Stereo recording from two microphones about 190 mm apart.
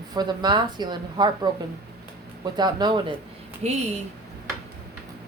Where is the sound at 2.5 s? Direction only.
25° right (ahead or behind).